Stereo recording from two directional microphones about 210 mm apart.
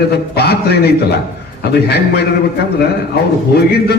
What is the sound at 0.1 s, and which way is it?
A man's voice, 50° left (ahead or behind).